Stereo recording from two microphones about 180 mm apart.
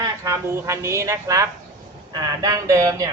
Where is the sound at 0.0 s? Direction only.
15° right (ahead or behind).